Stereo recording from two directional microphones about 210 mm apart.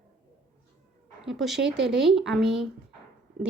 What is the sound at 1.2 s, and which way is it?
Speech, centre (ahead or behind).